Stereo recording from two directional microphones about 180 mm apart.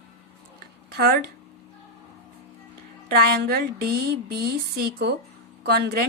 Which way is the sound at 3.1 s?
60° right (ahead or behind).